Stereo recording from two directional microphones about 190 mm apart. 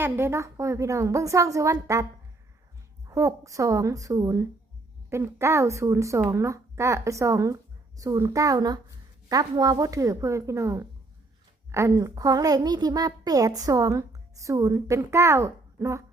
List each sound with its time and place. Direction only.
0.0 s a child's voice: 15° right (ahead or behind)
3.1 s a child's voice: 15° right (ahead or behind)